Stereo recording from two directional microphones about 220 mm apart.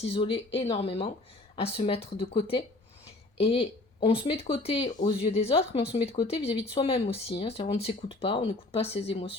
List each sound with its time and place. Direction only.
0.1 s speech: 25° left (ahead or behind)